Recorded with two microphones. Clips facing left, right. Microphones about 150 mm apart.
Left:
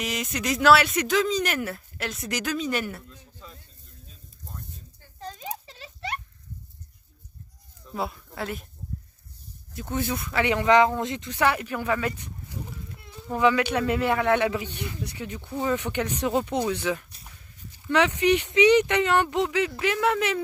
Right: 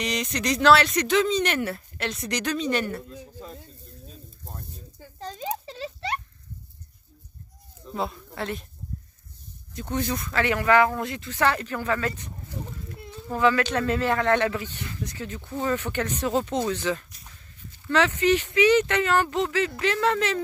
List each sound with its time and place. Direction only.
0.0 s speech: 5° left (ahead or behind)
5.4 s a sound: 30° right (ahead or behind)
7.9 s speech: 5° left (ahead or behind)
9.8 s speech: 10° left (ahead or behind)